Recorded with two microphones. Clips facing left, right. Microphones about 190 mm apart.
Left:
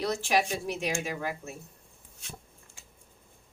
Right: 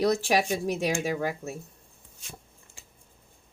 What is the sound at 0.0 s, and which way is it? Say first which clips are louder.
Speech: right 4 dB; 40° right (ahead or behind).